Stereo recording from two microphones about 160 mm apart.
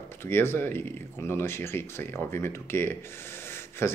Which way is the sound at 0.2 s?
15° left (ahead or behind).